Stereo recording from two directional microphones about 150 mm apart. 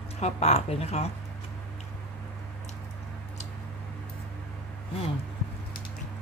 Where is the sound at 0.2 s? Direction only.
45° left (ahead or behind).